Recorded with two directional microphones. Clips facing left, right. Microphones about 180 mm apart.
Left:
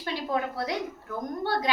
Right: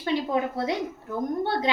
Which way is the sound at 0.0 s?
20° right (ahead or behind).